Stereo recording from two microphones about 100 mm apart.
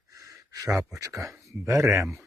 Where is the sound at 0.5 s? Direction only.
35° right (ahead or behind).